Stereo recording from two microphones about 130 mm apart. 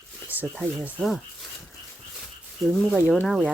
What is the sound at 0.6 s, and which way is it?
Speech, 10° right (ahead or behind).